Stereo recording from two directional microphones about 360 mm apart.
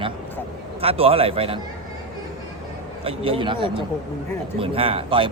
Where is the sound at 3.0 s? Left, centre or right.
Centre.